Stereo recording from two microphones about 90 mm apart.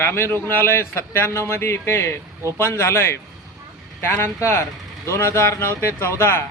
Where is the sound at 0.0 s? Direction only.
25° left (ahead or behind).